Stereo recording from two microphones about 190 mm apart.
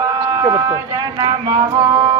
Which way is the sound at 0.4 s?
20° right (ahead or behind).